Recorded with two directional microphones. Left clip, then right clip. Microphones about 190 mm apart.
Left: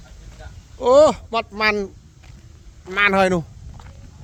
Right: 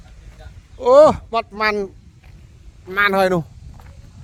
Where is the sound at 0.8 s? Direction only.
40° right (ahead or behind).